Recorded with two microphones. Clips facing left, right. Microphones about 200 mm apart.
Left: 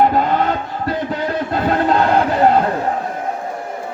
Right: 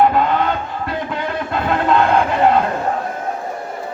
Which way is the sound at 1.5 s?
40° left (ahead or behind).